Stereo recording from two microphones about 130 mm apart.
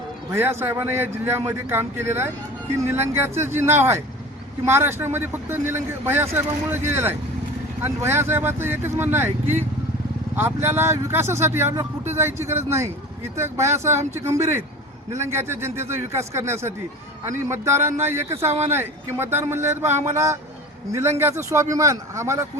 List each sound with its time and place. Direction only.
0.3 s a man's voice: 20° right (ahead or behind)